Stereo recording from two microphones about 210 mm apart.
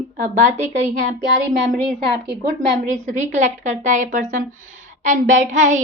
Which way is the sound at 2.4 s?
35° right (ahead or behind).